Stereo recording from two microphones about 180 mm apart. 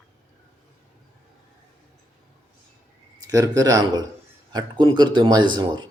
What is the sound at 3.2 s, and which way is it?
Speech, 20° right (ahead or behind).